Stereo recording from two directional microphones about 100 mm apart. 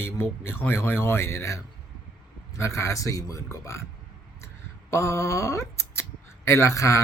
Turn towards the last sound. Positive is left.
turn(degrees=30)  # may be behind; listen again after turning